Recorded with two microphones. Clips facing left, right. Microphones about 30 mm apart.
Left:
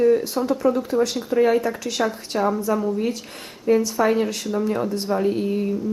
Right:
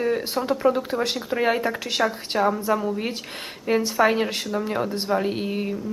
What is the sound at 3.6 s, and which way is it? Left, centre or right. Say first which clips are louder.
A woman's voice: left 1 dB; right.